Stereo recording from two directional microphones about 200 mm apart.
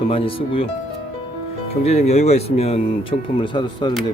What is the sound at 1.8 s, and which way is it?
Speech, 30° left (ahead or behind).